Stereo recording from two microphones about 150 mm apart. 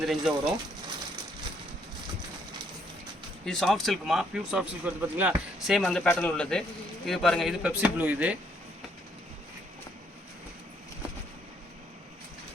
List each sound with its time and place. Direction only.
0.0 s speech: centre (ahead or behind)
3.4 s speech: 5° left (ahead or behind)